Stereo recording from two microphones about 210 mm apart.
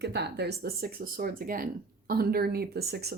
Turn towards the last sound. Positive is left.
turn(degrees=-50)  # may be behind; listen again after turning